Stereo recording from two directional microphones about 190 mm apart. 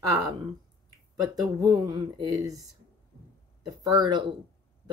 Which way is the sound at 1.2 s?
20° right (ahead or behind).